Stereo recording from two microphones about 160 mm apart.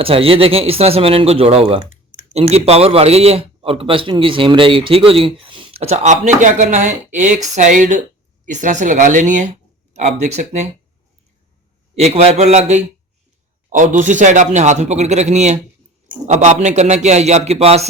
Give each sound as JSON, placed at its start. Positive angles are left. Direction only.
{"t": 0.0, "sound": "speech", "side_deg": -35}
{"t": 11.9, "sound": "speech", "side_deg": -40}